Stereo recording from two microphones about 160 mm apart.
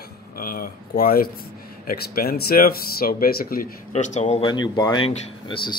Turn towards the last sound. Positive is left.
turn(degrees=35)  # may be behind; listen again after turning